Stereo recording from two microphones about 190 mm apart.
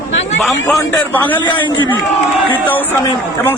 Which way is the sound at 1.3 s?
25° left (ahead or behind).